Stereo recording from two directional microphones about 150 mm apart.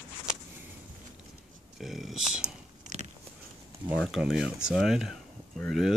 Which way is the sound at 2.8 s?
50° right (ahead or behind).